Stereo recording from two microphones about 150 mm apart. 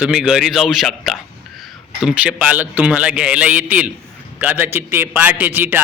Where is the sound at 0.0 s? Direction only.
5° right (ahead or behind).